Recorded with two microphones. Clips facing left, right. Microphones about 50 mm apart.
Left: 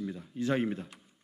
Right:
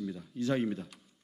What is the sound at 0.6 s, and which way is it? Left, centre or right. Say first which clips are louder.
Speech: left 1 dB; centre.